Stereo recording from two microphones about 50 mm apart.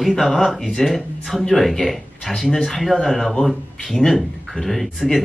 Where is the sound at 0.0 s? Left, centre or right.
Centre.